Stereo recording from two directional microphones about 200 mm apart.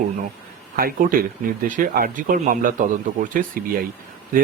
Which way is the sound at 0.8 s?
45° right (ahead or behind).